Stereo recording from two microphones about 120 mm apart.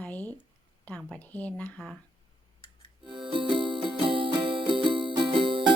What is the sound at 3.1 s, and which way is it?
Music, 45° right (ahead or behind).